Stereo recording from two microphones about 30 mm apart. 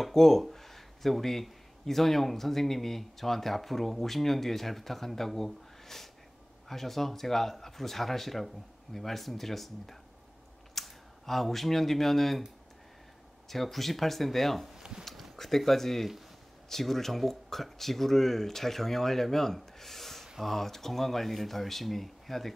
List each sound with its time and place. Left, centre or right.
0.1 s speech: centre
13.5 s speech: centre
14.8 s a sound: right
15.3 s speech: centre